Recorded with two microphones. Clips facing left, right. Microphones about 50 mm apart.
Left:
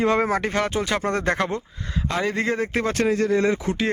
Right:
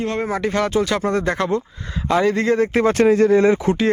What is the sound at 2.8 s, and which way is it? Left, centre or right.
Speech, right.